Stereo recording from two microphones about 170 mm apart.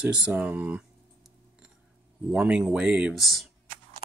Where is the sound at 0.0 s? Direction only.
5° right (ahead or behind).